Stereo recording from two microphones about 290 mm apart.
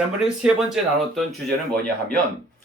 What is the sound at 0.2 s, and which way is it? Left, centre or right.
Speech, centre.